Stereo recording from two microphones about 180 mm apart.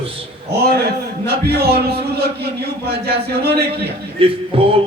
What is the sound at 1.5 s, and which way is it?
Speech, 65° right (ahead or behind).